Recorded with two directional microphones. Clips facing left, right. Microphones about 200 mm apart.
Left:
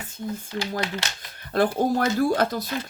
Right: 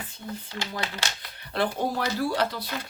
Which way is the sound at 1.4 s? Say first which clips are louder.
Left 5 dB; 45° left (ahead or behind).